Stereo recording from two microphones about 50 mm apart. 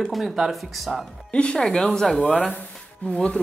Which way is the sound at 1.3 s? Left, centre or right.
Centre.